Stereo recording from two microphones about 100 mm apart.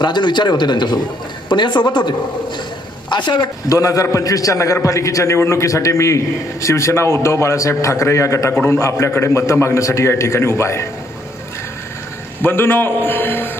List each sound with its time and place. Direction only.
0.0 s a man's voice: 50° left (ahead or behind)
3.7 s a man's voice: 35° left (ahead or behind)
12.4 s a man's voice: 20° left (ahead or behind)